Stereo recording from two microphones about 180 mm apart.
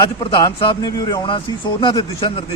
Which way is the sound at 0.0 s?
25° left (ahead or behind).